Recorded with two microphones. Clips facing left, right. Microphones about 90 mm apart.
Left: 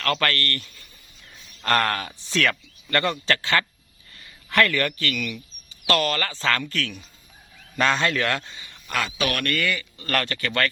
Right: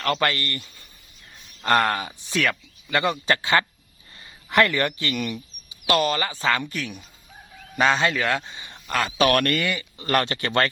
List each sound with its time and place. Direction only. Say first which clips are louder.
0.0 s speech: right 1 dB; 15° right (ahead or behind)
5.1 s speech: right 2 dB; 35° right (ahead or behind)
5.6 s a man's voice: right 1 dB; 15° right (ahead or behind)
8.5 s a sound: right 3 dB; 20° right (ahead or behind)
8.9 s speech: right 6 dB; 40° right (ahead or behind)
9.5 s speech: right 1 dB; 20° right (ahead or behind)